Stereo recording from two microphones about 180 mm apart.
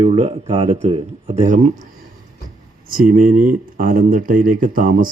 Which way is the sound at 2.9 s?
50° right (ahead or behind).